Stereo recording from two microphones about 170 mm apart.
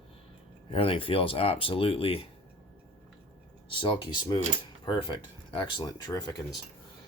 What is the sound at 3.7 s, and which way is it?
Speech, 30° left (ahead or behind).